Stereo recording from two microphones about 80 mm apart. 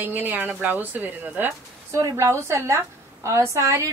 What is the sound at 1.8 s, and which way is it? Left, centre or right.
A woman's voice, right.